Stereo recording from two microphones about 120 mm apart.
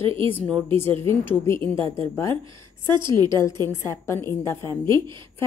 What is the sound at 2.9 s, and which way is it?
A woman's voice, 35° right (ahead or behind).